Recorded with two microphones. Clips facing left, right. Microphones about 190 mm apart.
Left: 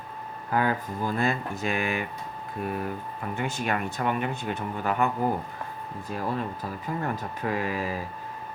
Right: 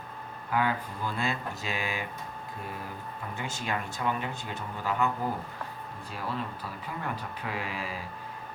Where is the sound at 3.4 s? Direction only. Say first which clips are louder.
Left 5 dB; 60° left (ahead or behind).